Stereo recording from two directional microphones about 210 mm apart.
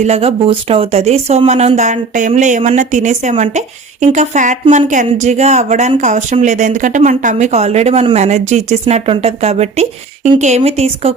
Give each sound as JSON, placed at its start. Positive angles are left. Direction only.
{"t": 0.0, "sound": "speech", "side_deg": -30}